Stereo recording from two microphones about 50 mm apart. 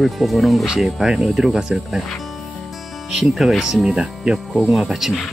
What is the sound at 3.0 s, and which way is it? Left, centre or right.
Speech, centre.